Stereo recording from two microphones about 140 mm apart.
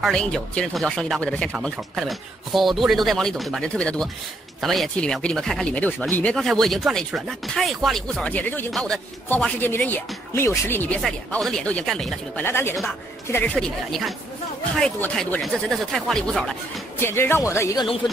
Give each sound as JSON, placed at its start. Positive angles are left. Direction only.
{"t": 0.0, "sound": "speech", "side_deg": 5}
{"t": 9.3, "sound": "speech", "side_deg": 15}
{"t": 11.0, "sound": "speech", "side_deg": 0}
{"t": 12.4, "sound": "speech", "side_deg": 15}
{"t": 13.6, "sound": "speech", "side_deg": 0}
{"t": 15.1, "sound": "speech", "side_deg": 5}
{"t": 17.0, "sound": "speech", "side_deg": 15}